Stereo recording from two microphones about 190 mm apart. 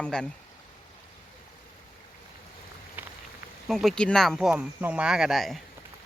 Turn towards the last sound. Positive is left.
turn(degrees=0)  # may be behind; listen again after turning